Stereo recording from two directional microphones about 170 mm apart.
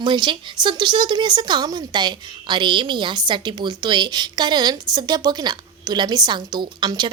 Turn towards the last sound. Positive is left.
turn(degrees=-25)  # may be behind; listen again after turning